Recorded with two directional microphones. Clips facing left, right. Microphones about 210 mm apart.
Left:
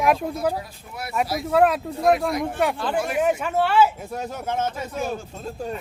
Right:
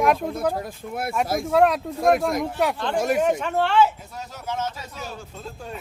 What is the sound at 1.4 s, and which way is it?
Speech, centre (ahead or behind).